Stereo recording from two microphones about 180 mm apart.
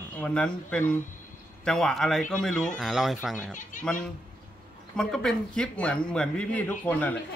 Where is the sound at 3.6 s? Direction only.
45° left (ahead or behind).